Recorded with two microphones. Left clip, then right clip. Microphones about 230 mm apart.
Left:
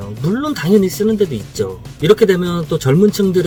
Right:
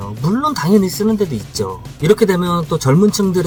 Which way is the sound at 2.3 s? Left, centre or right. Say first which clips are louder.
Right 1 dB; right.